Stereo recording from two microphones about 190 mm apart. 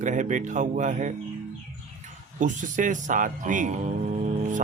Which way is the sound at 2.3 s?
40° right (ahead or behind).